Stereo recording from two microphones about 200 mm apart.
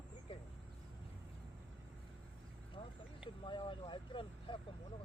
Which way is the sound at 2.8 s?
25° left (ahead or behind).